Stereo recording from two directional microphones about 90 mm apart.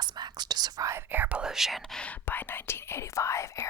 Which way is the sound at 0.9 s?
20° right (ahead or behind).